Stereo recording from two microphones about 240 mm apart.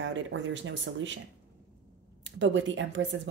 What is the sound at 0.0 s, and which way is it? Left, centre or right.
Speech, right.